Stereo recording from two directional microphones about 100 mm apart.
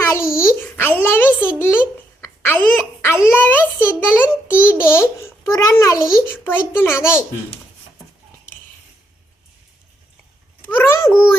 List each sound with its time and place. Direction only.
0.0 s a sound: 25° left (ahead or behind)
3.1 s a child's voice: 25° left (ahead or behind)
6.4 s a child's voice: 20° left (ahead or behind)
10.6 s a child's voice: 20° left (ahead or behind)